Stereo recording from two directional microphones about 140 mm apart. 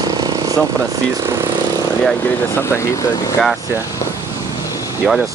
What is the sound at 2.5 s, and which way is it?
Speech, 20° left (ahead or behind).